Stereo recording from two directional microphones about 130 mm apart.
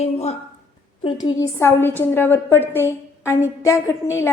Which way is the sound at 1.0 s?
35° left (ahead or behind).